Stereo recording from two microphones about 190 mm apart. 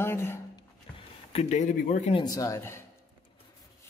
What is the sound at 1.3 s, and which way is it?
Speech, 35° left (ahead or behind).